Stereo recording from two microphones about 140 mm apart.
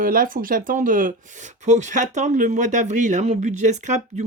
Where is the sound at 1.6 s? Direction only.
55° right (ahead or behind).